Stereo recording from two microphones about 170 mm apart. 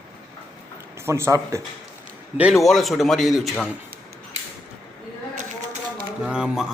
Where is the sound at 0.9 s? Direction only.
15° right (ahead or behind).